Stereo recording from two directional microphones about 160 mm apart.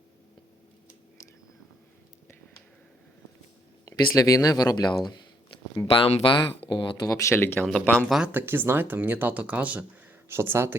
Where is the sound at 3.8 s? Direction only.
20° left (ahead or behind).